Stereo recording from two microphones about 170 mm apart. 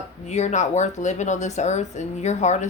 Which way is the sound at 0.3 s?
45° left (ahead or behind).